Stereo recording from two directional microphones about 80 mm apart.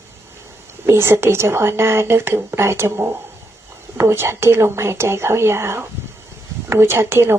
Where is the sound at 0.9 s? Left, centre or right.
Right.